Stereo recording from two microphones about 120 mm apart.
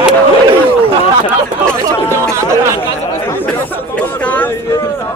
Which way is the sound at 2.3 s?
25° right (ahead or behind).